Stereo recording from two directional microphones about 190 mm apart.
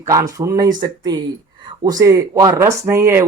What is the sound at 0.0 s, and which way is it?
Speech, 15° right (ahead or behind).